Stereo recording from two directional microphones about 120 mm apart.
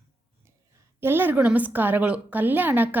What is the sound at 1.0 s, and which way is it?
A woman's voice, 20° right (ahead or behind).